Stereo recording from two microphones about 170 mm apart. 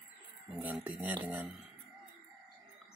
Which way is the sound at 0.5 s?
10° right (ahead or behind).